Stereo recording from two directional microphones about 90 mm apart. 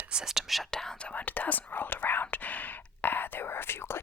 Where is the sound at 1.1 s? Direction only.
15° left (ahead or behind).